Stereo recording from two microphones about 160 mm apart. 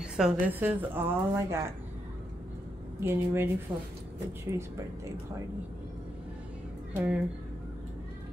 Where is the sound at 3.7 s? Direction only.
30° right (ahead or behind).